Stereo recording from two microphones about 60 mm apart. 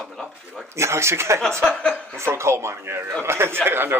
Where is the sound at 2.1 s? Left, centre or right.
Right.